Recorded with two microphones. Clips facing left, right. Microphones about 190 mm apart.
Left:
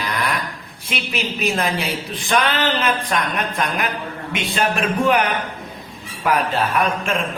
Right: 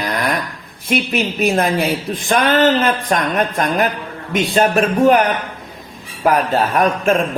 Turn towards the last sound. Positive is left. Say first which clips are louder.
# right 6 dB
turn(degrees=-45)  # may be behind; listen again after turning